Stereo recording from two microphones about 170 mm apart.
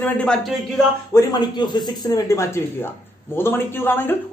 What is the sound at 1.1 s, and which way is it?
A woman's voice, 25° left (ahead or behind).